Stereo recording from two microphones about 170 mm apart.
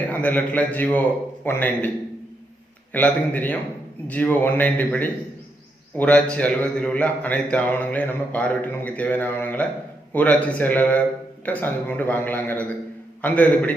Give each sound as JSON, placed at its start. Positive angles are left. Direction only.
{"t": 0.1, "sound": "a man's voice", "side_deg": 10}
{"t": 2.9, "sound": "a man's voice", "side_deg": 10}